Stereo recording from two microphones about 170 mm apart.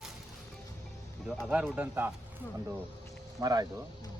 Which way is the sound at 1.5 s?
5° right (ahead or behind).